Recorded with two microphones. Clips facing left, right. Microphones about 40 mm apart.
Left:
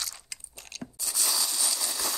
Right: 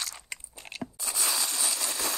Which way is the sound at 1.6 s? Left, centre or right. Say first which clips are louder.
Right 1 dB; right.